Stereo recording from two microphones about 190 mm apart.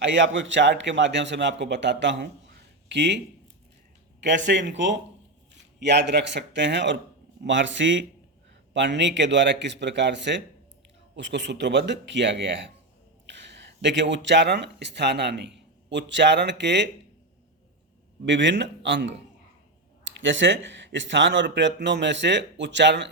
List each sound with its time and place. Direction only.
0.0 s speech: 75° right (ahead or behind)
4.2 s speech: 70° right (ahead or behind)
18.3 s speech: 70° right (ahead or behind)